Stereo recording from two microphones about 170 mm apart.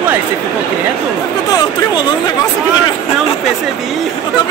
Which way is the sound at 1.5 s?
25° left (ahead or behind).